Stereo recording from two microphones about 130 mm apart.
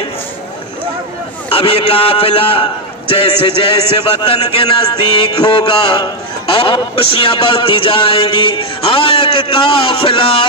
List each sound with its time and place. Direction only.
1.5 s a man's voice: 45° left (ahead or behind)